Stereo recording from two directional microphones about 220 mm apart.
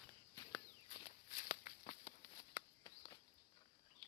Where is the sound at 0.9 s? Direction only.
30° left (ahead or behind).